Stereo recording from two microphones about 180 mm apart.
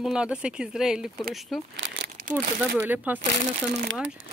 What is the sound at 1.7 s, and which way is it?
Crumpling, 90° right.